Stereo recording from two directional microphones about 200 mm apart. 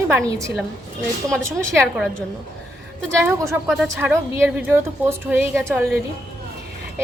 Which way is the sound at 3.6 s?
5° right (ahead or behind).